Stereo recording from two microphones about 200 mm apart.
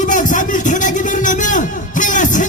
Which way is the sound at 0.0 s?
40° left (ahead or behind).